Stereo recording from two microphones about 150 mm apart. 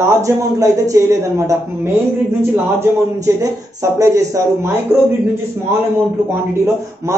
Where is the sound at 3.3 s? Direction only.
20° right (ahead or behind).